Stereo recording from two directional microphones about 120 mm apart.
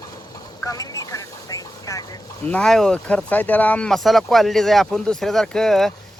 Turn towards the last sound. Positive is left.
turn(degrees=0)  # may be behind; listen again after turning